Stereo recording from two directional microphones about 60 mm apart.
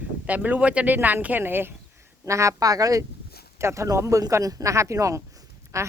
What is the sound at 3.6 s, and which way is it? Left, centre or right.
Speech, right.